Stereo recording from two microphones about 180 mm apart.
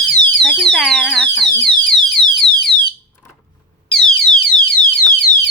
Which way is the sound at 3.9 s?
5° left (ahead or behind).